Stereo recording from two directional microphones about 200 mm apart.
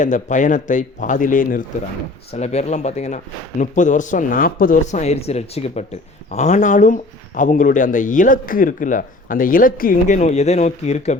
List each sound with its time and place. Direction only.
0.0 s speech: 40° left (ahead or behind)